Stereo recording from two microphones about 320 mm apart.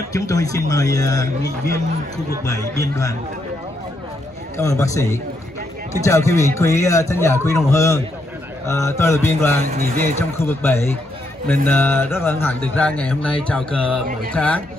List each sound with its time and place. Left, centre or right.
0.1 s a man's voice: centre
2.8 s a man's voice: centre
4.6 s a man's voice: centre
9.7 s a man's voice: right
10.6 s a man's voice: centre